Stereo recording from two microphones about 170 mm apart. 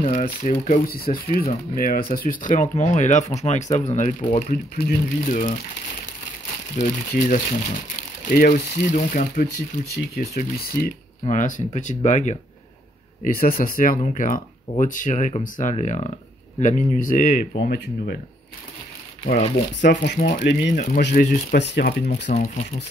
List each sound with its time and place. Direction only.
0.0 s speech: 45° left (ahead or behind)
6.8 s speech: 55° left (ahead or behind)
9.9 s speech: 65° left (ahead or behind)
11.2 s speech: 50° left (ahead or behind)
13.2 s speech: 60° left (ahead or behind)
17.6 s speech: 80° left
19.2 s speech: 40° left (ahead or behind)
19.8 s speech: 90° left
20.2 s speech: 50° left (ahead or behind)
20.4 s speech: 90° left
21.1 s speech: 50° left (ahead or behind)
21.5 s speech: 90° left
22.3 s speech: 40° left (ahead or behind)